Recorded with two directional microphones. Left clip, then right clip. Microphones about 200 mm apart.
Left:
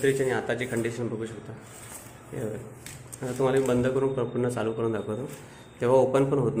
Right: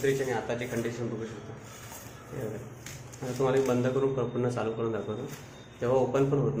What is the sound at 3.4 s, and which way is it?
A man's voice, 25° left (ahead or behind).